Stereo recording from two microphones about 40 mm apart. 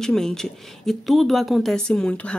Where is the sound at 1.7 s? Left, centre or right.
Centre.